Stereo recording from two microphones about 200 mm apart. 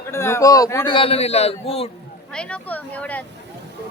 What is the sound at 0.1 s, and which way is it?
Speech, 15° left (ahead or behind).